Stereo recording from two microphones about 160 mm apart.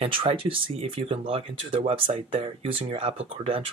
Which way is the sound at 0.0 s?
35° right (ahead or behind).